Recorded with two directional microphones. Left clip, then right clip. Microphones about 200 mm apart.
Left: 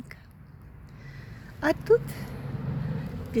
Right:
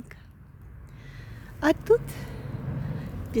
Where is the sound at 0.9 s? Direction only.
20° right (ahead or behind).